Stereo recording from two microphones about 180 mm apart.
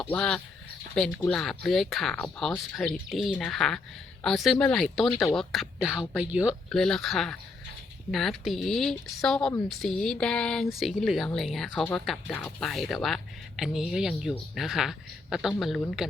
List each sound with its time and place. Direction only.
0.0 s speech: 10° left (ahead or behind)